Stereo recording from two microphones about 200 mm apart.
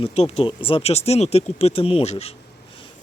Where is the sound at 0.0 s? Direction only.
30° left (ahead or behind).